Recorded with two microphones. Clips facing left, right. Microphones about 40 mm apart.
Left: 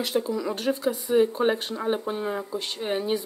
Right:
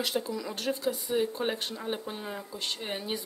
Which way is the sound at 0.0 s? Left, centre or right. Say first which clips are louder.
Left 6 dB; centre.